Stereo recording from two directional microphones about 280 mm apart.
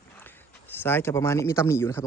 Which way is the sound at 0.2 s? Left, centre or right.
Centre.